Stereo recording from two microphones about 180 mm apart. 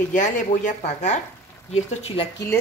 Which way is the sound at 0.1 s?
45° left (ahead or behind).